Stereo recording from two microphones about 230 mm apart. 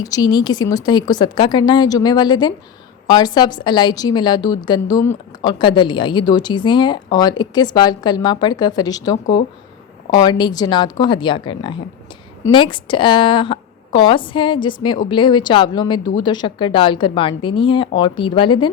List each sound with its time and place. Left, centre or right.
0.0 s a woman's voice: centre
10.2 s a woman's voice: centre